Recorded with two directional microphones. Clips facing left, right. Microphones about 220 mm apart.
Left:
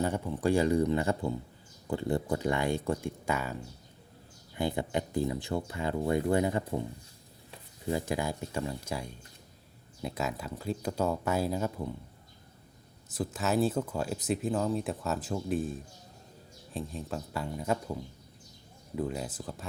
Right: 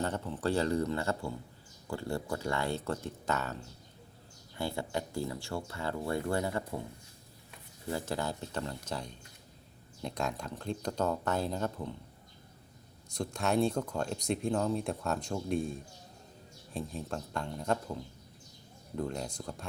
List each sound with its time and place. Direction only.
0.0 s speech: 10° left (ahead or behind)
7.9 s speech: 15° left (ahead or behind)
13.1 s speech: 5° left (ahead or behind)